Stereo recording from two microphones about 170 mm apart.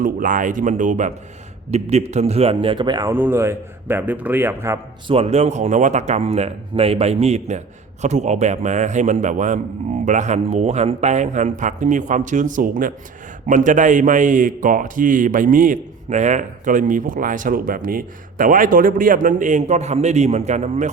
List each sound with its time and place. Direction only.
0.0 s a man's voice: 50° right (ahead or behind); by 3.1 s 25° right (ahead or behind)
3.1 s a man's voice: 15° right (ahead or behind)
5.0 s a man's voice: 35° right (ahead or behind)